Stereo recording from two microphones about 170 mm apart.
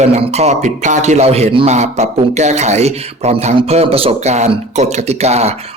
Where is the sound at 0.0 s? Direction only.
40° right (ahead or behind).